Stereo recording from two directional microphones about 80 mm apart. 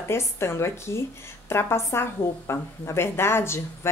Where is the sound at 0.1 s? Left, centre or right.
Left.